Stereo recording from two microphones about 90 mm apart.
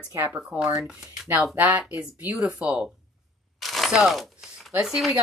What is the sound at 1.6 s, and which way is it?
Speech, 20° right (ahead or behind).